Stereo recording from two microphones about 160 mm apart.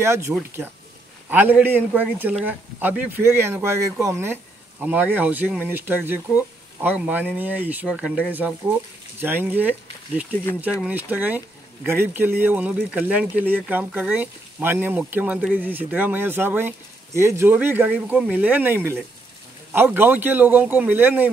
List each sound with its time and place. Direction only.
0.0 s speech: 15° right (ahead or behind)